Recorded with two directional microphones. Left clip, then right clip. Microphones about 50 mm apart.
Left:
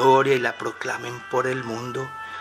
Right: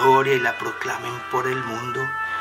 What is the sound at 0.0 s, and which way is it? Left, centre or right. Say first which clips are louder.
Speech: right 1 dB; left.